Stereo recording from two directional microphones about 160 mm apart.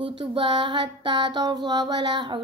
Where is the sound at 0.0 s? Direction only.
30° right (ahead or behind).